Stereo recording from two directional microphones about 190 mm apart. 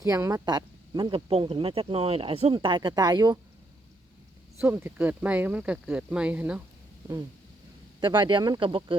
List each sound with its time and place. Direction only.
0.0 s speech: 15° right (ahead or behind)
4.6 s speech: 10° right (ahead or behind)
8.0 s speech: 25° right (ahead or behind)